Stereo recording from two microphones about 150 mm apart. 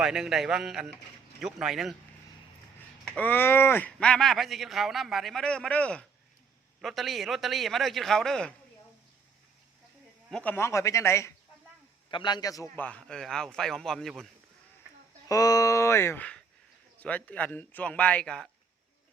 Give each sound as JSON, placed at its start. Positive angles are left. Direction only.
{"t": 0.0, "sound": "speech", "side_deg": -5}
{"t": 3.0, "sound": "speech", "side_deg": 10}
{"t": 10.3, "sound": "a man's voice", "side_deg": 10}
{"t": 12.1, "sound": "a man's voice", "side_deg": 30}
{"t": 12.7, "sound": "speech", "side_deg": 10}
{"t": 15.3, "sound": "a man's voice", "side_deg": 25}